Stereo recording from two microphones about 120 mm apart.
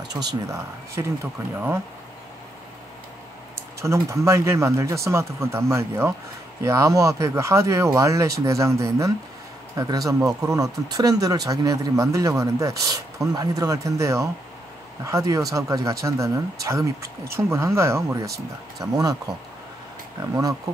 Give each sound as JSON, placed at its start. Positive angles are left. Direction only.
{"t": 0.1, "sound": "speech", "side_deg": -30}
{"t": 3.8, "sound": "speech", "side_deg": -25}